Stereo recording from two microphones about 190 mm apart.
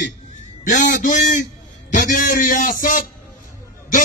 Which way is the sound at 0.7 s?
40° left (ahead or behind).